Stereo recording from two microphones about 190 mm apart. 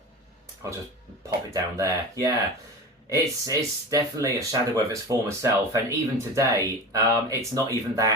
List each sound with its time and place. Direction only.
1.5 s speech: 15° right (ahead or behind)